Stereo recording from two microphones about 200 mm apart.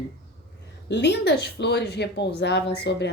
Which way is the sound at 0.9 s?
60° left (ahead or behind).